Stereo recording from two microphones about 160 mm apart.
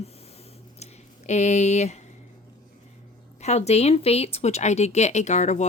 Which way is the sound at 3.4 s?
45° left (ahead or behind).